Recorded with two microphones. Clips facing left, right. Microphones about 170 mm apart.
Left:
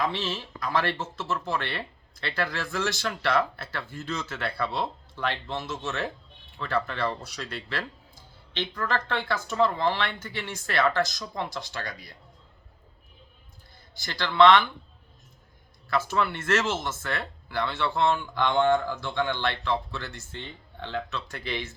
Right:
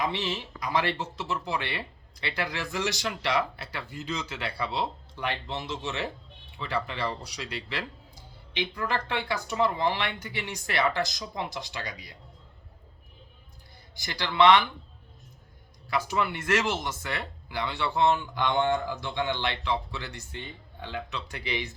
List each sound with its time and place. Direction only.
0.0 s speech: 15° right (ahead or behind)
13.9 s speech: 15° right (ahead or behind)
15.9 s speech: 15° right (ahead or behind)